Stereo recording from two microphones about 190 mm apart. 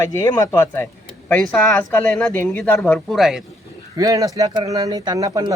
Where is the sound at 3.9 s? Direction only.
20° right (ahead or behind).